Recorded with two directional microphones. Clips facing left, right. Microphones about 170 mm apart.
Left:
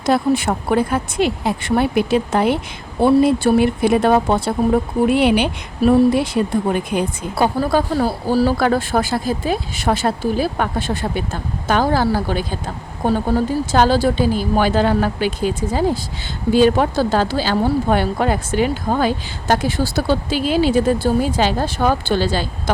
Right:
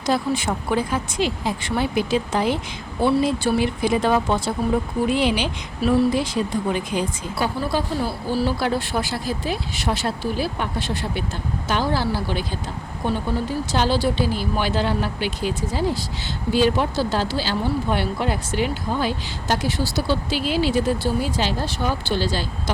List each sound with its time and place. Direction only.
0.0 s speech: 60° left (ahead or behind)